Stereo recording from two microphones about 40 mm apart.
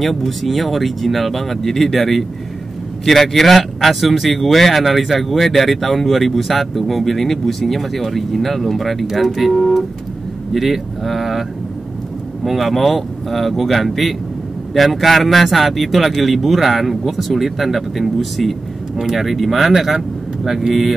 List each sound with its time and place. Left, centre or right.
0.0 s speech: centre
12.4 s speech: centre